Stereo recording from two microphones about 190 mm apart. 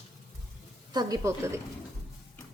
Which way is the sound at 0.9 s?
20° right (ahead or behind).